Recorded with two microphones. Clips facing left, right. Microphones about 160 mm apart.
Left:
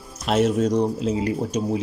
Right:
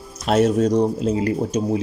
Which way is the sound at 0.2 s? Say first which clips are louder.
Right 3 dB; 40° right (ahead or behind).